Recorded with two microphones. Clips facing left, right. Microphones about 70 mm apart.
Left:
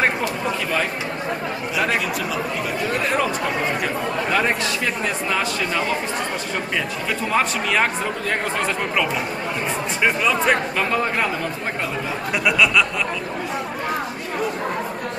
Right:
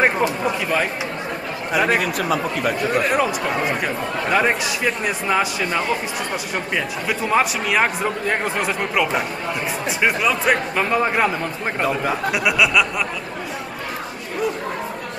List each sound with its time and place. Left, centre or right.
0.0 s speech: centre
1.9 s speech: right
2.9 s speech: centre
7.1 s speech: centre
10.0 s speech: centre
12.3 s speech: centre